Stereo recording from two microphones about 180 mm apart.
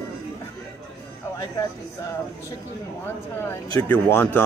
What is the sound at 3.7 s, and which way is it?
Speech, 15° left (ahead or behind).